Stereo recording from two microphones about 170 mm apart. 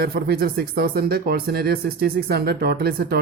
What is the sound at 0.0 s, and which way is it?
Speech, 65° right (ahead or behind).